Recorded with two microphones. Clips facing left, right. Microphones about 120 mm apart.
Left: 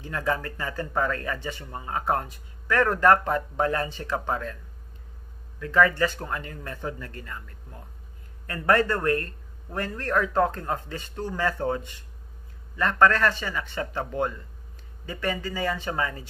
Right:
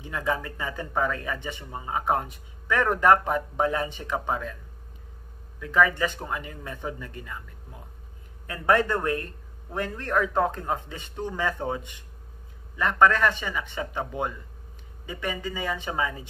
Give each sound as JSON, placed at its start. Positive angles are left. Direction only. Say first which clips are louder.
{"t": 0.0, "sound": "speech", "louder": "left 1 dB", "side_deg": -15}
{"t": 5.6, "sound": "speech", "louder": "left 1 dB", "side_deg": -15}
{"t": 8.5, "sound": "speech", "louder": "even", "side_deg": -15}